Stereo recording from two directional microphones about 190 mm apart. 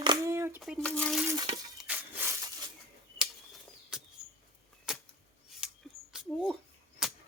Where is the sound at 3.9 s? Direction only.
5° right (ahead or behind).